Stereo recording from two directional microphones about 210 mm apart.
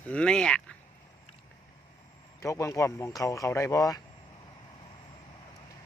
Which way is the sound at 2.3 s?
15° left (ahead or behind).